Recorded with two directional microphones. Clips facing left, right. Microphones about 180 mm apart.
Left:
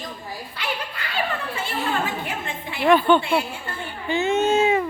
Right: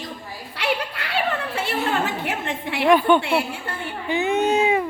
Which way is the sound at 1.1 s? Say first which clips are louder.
Right 3 dB; 75° right (ahead or behind).